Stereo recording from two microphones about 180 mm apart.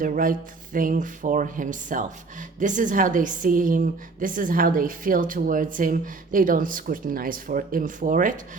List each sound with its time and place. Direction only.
0.0 s a woman's voice: 50° right (ahead or behind)